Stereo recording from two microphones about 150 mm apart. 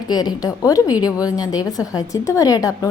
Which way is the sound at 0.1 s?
25° left (ahead or behind).